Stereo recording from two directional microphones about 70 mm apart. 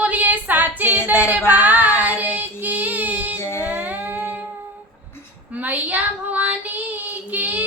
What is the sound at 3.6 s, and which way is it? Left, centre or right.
Child singing, right.